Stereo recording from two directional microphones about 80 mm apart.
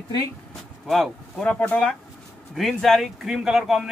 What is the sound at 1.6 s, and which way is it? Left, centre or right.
Speech, centre.